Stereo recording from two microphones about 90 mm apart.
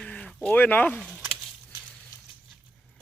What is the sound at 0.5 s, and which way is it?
Speech, 20° left (ahead or behind).